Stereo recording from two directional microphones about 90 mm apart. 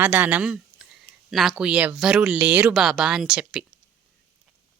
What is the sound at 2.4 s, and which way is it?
Speech, 20° right (ahead or behind).